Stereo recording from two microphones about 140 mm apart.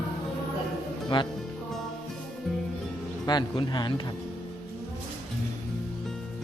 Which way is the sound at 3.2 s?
30° left (ahead or behind).